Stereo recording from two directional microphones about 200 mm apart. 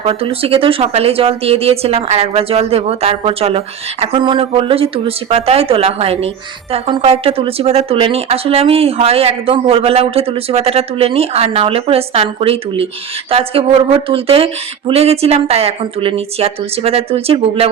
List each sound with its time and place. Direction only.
0.0 s a woman's voice: 30° right (ahead or behind)